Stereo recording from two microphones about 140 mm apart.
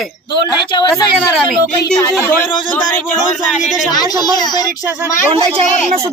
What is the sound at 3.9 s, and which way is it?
Speech, 30° left (ahead or behind).